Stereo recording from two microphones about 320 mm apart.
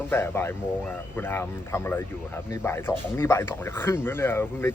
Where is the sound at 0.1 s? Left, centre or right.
Centre.